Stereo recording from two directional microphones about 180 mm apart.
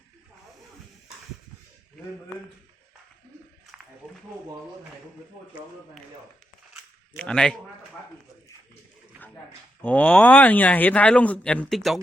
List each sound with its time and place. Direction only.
7.2 s a man's voice: 5° left (ahead or behind)
9.8 s speech: 10° left (ahead or behind)